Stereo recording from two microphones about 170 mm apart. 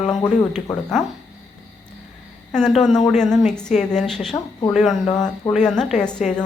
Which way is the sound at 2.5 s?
5° left (ahead or behind).